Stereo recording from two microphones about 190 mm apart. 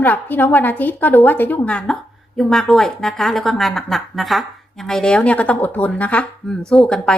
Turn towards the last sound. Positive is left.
turn(degrees=5)  # may be behind; listen again after turning